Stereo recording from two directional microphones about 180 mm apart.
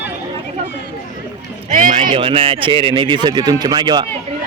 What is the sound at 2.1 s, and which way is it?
Speech, 30° right (ahead or behind).